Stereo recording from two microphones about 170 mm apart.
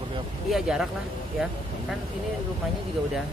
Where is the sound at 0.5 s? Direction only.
5° right (ahead or behind).